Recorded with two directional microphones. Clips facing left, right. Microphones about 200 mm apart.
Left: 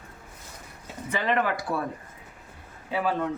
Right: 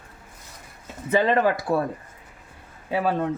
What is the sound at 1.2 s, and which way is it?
Speech, 30° right (ahead or behind).